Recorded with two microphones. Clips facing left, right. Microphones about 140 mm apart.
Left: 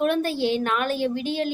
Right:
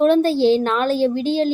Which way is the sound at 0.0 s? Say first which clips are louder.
Right 8 dB; 30° right (ahead or behind).